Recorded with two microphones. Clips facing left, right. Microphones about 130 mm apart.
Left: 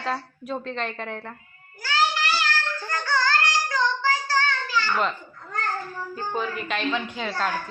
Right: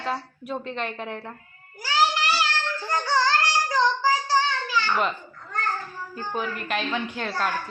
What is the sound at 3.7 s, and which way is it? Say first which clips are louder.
Child singing: right 4 dB; 35° right (ahead or behind).